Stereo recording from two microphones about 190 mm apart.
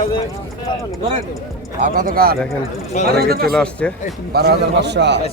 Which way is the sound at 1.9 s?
50° right (ahead or behind).